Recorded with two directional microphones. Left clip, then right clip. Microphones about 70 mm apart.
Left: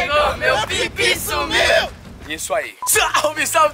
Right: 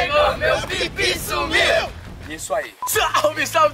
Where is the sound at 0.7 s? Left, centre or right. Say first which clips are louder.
Left 3 dB; left.